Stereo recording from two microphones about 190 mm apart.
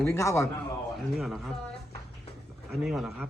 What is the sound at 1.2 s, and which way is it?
Speech, centre (ahead or behind).